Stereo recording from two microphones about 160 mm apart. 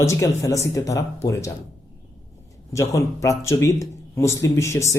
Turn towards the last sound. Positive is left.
turn(degrees=20)  # may be behind; listen again after turning